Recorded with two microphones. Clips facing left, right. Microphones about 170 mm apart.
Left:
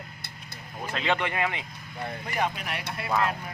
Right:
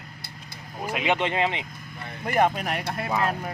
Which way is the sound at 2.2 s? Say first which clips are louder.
Right 8 dB; 50° right (ahead or behind).